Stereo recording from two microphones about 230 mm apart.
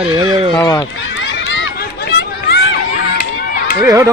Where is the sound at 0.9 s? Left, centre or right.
Left.